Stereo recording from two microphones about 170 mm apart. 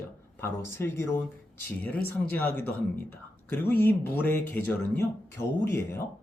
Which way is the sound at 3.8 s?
10° left (ahead or behind).